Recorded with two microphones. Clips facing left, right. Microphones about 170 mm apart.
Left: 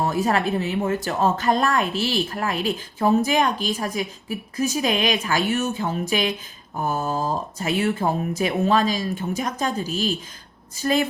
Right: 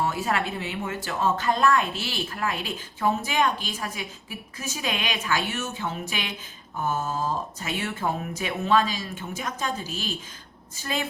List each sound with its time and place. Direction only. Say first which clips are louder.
0.0 s speech: left 5 dB; 40° left (ahead or behind)